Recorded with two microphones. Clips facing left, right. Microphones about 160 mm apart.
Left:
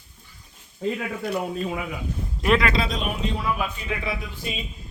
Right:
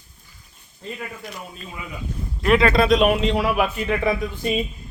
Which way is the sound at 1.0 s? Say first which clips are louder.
Left 7 dB; 65° left (ahead or behind).